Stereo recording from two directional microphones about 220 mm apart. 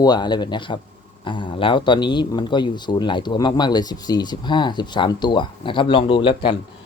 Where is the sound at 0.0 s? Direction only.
20° left (ahead or behind).